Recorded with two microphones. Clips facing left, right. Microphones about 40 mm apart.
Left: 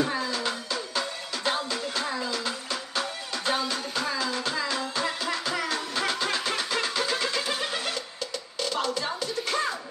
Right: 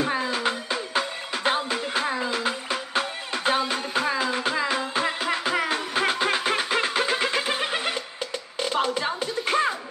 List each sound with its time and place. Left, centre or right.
0.0 s music: right